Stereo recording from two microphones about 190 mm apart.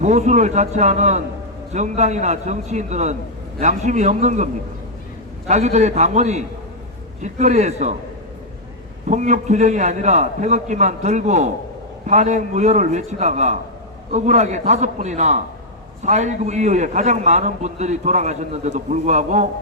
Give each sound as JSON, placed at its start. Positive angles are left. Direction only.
{"t": 0.0, "sound": "a man's voice", "side_deg": -40}
{"t": 5.5, "sound": "a man's voice", "side_deg": -35}
{"t": 9.0, "sound": "a man's voice", "side_deg": -40}